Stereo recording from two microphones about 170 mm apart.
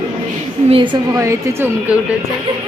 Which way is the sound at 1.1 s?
15° right (ahead or behind).